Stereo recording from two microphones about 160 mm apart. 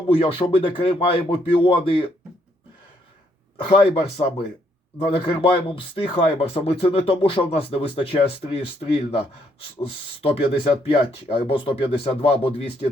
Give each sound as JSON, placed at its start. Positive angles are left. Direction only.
{"t": 0.2, "sound": "speech", "side_deg": 40}
{"t": 3.7, "sound": "speech", "side_deg": 40}